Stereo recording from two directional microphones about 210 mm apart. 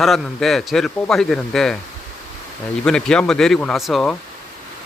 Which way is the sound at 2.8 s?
5° left (ahead or behind).